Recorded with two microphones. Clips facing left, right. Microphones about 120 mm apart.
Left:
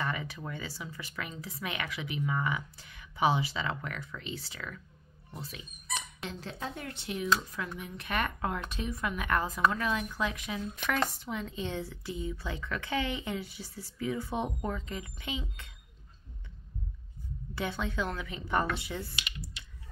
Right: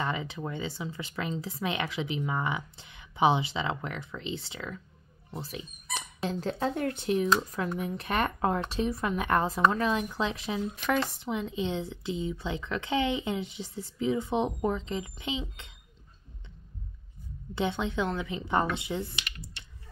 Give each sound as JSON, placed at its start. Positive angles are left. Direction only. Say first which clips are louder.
{"t": 0.0, "sound": "speech", "louder": "right 3 dB", "side_deg": -20}
{"t": 6.6, "sound": "speech", "louder": "right 10 dB", "side_deg": -50}
{"t": 17.6, "sound": "speech", "louder": "right 4 dB", "side_deg": -20}